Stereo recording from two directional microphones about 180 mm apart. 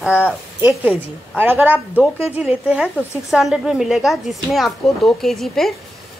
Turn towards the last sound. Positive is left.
turn(degrees=0)  # may be behind; listen again after turning